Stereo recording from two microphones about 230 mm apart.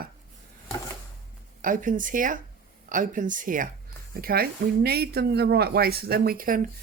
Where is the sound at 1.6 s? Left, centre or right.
Right.